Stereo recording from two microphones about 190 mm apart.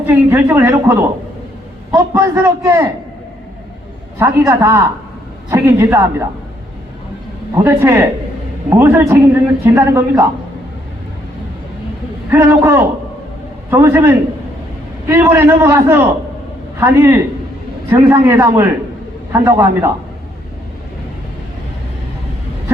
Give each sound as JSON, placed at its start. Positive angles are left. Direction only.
{"t": 0.1, "sound": "a man's voice", "side_deg": -10}
{"t": 4.2, "sound": "a man's voice", "side_deg": -15}
{"t": 7.6, "sound": "a man's voice", "side_deg": -10}
{"t": 12.3, "sound": "a man's voice", "side_deg": -15}